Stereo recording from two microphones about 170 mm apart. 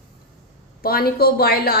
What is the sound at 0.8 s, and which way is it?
Speech, 65° left (ahead or behind).